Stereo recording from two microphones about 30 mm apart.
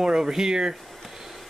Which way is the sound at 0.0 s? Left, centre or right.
Right.